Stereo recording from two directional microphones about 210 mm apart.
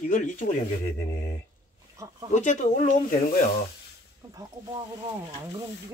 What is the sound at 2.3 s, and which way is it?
Speech, 35° left (ahead or behind).